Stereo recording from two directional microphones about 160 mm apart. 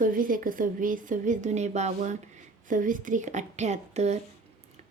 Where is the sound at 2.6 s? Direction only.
55° right (ahead or behind).